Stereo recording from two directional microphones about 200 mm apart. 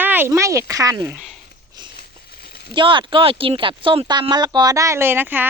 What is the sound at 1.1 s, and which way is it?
Speech, centre (ahead or behind).